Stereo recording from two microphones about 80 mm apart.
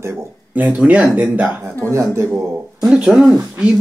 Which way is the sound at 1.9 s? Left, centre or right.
Right.